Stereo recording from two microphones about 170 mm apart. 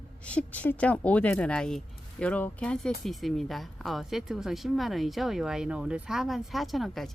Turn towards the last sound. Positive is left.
turn(degrees=0)  # may be behind; listen again after turning